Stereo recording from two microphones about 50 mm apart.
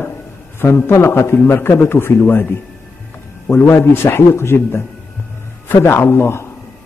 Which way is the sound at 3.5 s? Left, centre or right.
Left.